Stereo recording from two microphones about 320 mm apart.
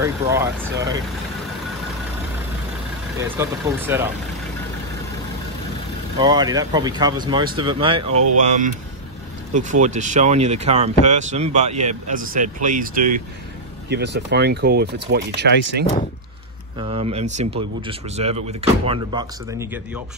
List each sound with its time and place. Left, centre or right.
0.0 s speech: centre
3.2 s speech: centre
6.1 s speech: centre; by 15.8 s right
16.8 s speech: centre